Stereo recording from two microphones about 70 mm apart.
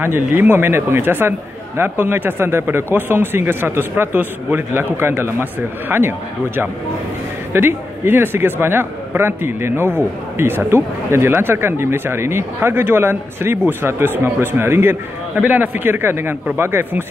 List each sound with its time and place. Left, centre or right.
0.0 s a man's voice: right
15.3 s a man's voice: right